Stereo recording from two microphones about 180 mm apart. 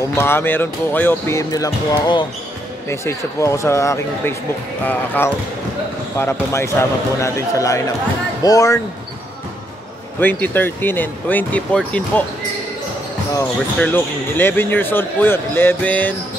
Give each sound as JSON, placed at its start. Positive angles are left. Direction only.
{"t": 0.1, "sound": "speech", "side_deg": 15}
{"t": 10.2, "sound": "speech", "side_deg": 10}
{"t": 13.4, "sound": "speech", "side_deg": 10}